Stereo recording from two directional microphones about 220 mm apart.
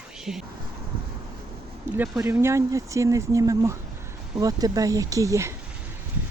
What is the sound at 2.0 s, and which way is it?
Speech, 10° right (ahead or behind).